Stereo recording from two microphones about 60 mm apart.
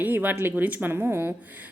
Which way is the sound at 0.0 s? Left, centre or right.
Right.